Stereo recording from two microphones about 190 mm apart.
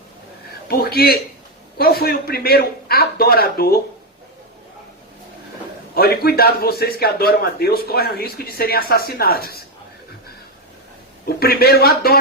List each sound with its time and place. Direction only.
0.7 s a man's voice: 55° left (ahead or behind)
5.9 s a man's voice: 55° left (ahead or behind)
11.3 s a man's voice: 55° left (ahead or behind)